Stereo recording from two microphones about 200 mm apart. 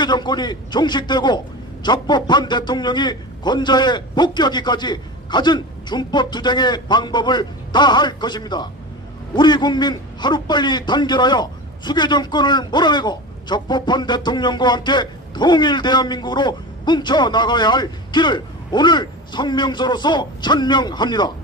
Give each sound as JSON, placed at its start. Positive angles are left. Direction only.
{"t": 0.0, "sound": "a man's voice", "side_deg": 20}